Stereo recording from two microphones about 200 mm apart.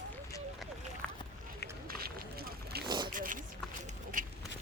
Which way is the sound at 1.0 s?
5° left (ahead or behind).